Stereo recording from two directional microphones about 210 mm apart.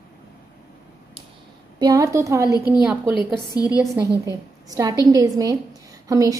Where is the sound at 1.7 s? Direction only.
15° right (ahead or behind).